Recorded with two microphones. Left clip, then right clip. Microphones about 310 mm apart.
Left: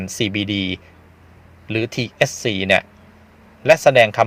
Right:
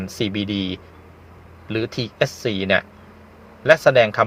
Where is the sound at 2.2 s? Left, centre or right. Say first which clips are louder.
Left 3 dB; left.